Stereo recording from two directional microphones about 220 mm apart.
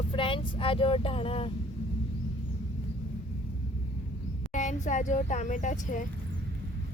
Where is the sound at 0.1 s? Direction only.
25° left (ahead or behind).